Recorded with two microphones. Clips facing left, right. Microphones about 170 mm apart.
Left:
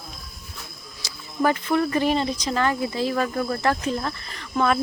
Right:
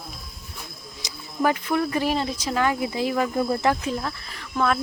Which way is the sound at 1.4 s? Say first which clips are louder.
Left 1 dB; 10° right (ahead or behind).